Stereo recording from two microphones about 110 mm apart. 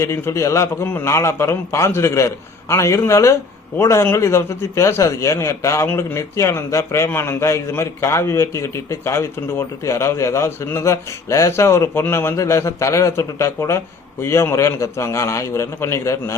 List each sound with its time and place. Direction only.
0.0 s a man's voice: 25° left (ahead or behind)